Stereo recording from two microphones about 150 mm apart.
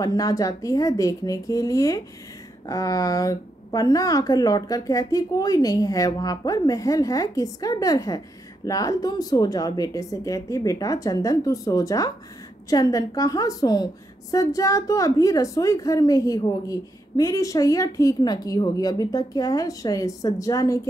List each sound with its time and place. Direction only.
0.0 s a woman's voice: 25° left (ahead or behind)